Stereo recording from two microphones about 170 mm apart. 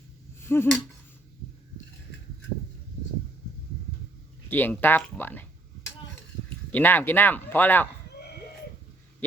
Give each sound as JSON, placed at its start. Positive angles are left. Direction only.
{"t": 0.4, "sound": "a sound", "side_deg": 15}
{"t": 4.4, "sound": "speech", "side_deg": 10}
{"t": 6.7, "sound": "speech", "side_deg": 10}